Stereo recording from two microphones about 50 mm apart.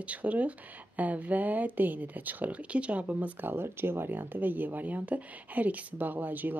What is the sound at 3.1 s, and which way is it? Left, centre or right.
Speech, right.